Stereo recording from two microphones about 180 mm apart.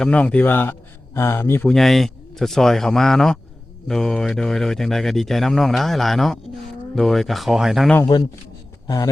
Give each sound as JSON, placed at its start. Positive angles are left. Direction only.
{"t": 0.0, "sound": "speech", "side_deg": 5}
{"t": 1.7, "sound": "speech", "side_deg": 0}
{"t": 7.9, "sound": "a man's voice", "side_deg": 20}